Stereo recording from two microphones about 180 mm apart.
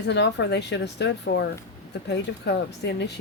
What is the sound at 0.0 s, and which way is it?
Speech, 75° left (ahead or behind).